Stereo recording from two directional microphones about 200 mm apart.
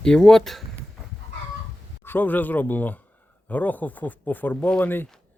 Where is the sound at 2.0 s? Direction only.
10° left (ahead or behind).